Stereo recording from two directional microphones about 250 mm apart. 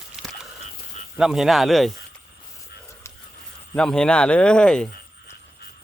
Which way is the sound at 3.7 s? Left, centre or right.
Centre.